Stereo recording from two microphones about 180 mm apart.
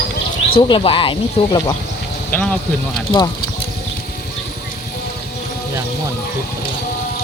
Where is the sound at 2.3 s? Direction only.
10° left (ahead or behind).